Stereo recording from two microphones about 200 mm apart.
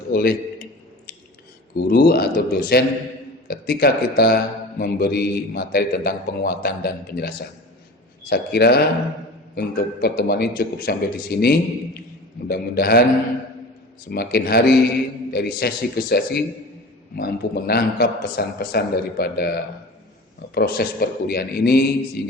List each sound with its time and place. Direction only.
0.1 s a man's voice: 45° left (ahead or behind)
1.7 s a man's voice: 50° left (ahead or behind)
14.1 s a man's voice: 50° left (ahead or behind)
20.5 s a man's voice: 50° left (ahead or behind)